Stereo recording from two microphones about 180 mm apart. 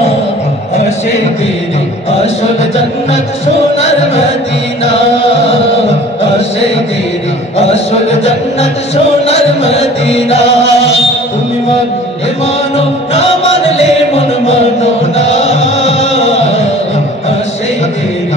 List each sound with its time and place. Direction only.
7.5 s music: 35° left (ahead or behind)
12.7 s music: 35° left (ahead or behind)